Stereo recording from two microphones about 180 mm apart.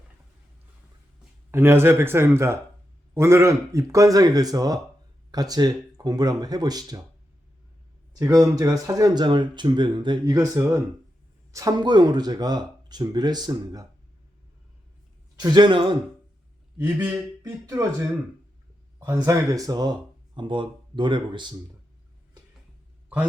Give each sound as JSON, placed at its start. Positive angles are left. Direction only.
{"t": 1.5, "sound": "speech", "side_deg": -15}
{"t": 8.2, "sound": "speech", "side_deg": -20}
{"t": 15.4, "sound": "speech", "side_deg": -25}
{"t": 16.7, "sound": "speech", "side_deg": -10}
{"t": 18.9, "sound": "speech", "side_deg": -15}